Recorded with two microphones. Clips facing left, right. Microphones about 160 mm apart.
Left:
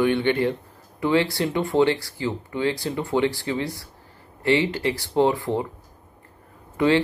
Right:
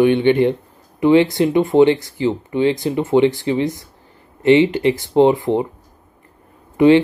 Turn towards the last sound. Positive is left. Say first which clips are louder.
# right 8 dB
turn(degrees=-20)  # may be behind; listen again after turning